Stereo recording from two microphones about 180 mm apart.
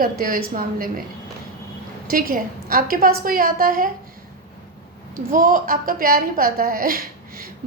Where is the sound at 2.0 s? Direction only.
50° right (ahead or behind).